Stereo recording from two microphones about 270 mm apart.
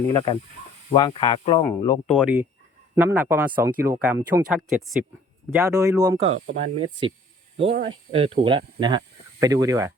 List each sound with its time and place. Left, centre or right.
0.1 s speech: centre
2.1 s a man's voice: centre